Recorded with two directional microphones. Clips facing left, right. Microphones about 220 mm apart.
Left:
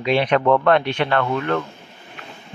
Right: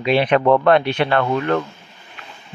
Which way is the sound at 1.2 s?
20° right (ahead or behind).